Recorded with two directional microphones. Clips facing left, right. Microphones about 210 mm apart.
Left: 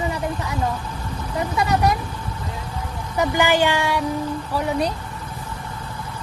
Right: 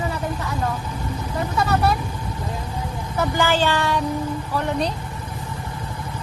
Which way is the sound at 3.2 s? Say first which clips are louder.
Left 2 dB; 15° left (ahead or behind).